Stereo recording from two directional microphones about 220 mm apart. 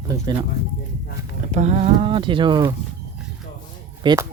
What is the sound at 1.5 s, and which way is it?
Speech, 30° right (ahead or behind).